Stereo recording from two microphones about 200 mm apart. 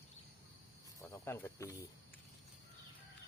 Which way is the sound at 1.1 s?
15° left (ahead or behind).